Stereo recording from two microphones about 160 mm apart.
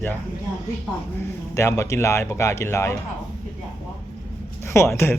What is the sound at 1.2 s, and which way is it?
Speech, 20° left (ahead or behind).